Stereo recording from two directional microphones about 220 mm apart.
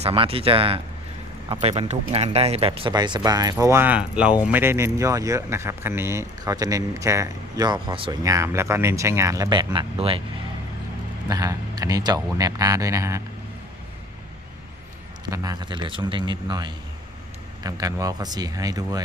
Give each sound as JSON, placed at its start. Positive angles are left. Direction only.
{"t": 0.0, "sound": "speech", "side_deg": -25}
{"t": 11.3, "sound": "speech", "side_deg": -15}
{"t": 15.3, "sound": "speech", "side_deg": -15}